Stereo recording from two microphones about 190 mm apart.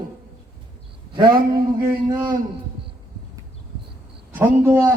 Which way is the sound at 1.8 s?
20° right (ahead or behind).